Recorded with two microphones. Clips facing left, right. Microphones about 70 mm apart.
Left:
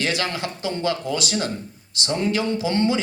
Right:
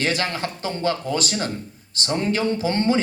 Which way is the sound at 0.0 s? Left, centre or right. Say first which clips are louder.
Right 1 dB; right.